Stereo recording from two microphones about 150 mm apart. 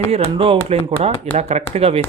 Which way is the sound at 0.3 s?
40° right (ahead or behind).